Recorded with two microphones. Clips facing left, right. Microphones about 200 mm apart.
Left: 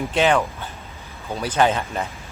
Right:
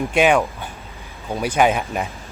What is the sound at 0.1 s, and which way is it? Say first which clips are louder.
Speech: right 2 dB; 15° right (ahead or behind).